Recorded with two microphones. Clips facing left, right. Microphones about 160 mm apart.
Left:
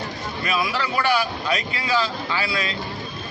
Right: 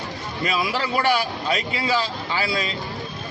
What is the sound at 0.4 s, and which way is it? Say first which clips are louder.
A man's voice: right 1 dB; 30° right (ahead or behind).